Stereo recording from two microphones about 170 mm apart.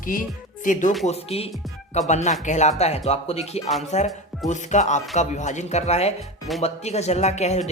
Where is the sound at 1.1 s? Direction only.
35° left (ahead or behind).